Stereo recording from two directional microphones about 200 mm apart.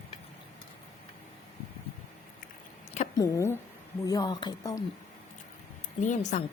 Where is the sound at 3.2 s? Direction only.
15° left (ahead or behind).